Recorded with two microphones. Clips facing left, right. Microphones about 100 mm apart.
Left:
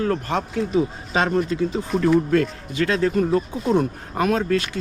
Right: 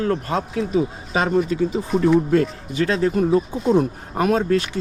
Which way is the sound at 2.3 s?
30° right (ahead or behind).